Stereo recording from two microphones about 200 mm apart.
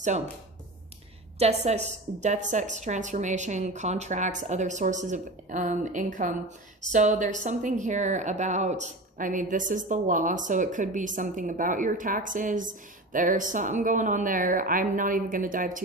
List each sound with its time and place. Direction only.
1.4 s a woman's voice: 35° right (ahead or behind)